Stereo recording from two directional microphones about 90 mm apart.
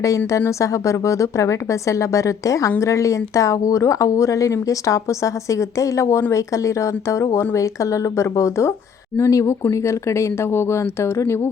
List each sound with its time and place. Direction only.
0.3 s a woman's voice: 35° left (ahead or behind)